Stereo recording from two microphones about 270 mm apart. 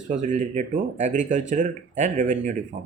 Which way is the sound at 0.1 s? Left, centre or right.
Right.